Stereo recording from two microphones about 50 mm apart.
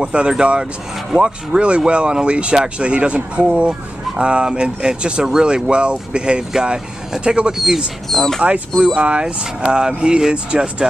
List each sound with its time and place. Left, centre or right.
0.0 s speech: centre
8.1 s speech: centre
8.4 s speech: right